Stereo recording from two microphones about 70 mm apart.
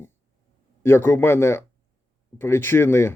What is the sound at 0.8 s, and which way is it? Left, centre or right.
Speech, left.